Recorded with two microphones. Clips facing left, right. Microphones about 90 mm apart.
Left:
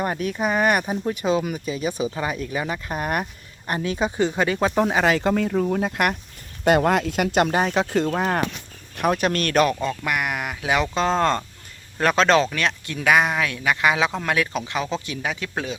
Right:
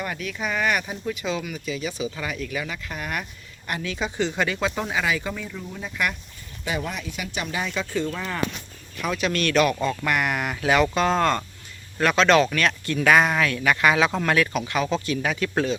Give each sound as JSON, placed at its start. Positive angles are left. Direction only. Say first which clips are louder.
{"t": 0.0, "sound": "speech", "louder": "left 6 dB", "side_deg": 40}
{"t": 3.7, "sound": "speech", "louder": "left 5 dB", "side_deg": 30}
{"t": 6.7, "sound": "speech", "louder": "left 11 dB", "side_deg": 75}
{"t": 7.5, "sound": "speech", "louder": "left 6 dB", "side_deg": 55}
{"t": 10.0, "sound": "speech", "louder": "right 1 dB", "side_deg": 10}
{"t": 10.9, "sound": "speech", "louder": "left 1 dB", "side_deg": 30}
{"t": 12.4, "sound": "speech", "louder": "right 1 dB", "side_deg": 20}